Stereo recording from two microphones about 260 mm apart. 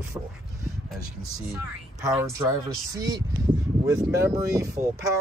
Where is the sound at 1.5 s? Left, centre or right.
Centre.